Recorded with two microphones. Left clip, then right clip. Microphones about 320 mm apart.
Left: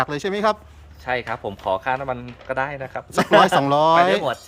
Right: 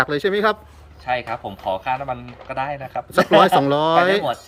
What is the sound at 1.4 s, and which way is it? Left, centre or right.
Speech, left.